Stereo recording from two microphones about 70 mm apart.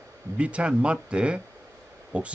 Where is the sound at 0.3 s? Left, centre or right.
Centre.